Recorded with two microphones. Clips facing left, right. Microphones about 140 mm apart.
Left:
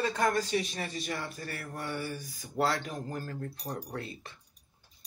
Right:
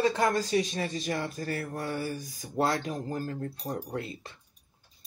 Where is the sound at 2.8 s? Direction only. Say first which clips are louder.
Right 4 dB; 35° right (ahead or behind).